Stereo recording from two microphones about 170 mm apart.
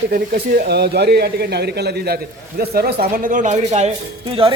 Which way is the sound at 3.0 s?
55° right (ahead or behind).